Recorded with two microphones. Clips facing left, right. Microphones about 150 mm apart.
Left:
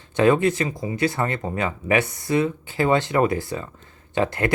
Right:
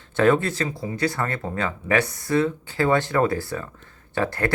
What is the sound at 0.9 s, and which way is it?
Speech, 20° left (ahead or behind).